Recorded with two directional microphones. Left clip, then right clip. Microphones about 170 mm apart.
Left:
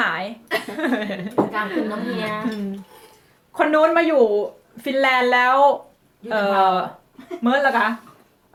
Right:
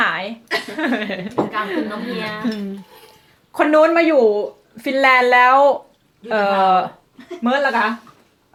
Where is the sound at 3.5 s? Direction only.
40° right (ahead or behind).